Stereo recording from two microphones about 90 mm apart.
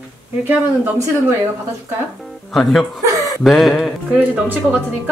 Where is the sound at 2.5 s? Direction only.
Centre (ahead or behind).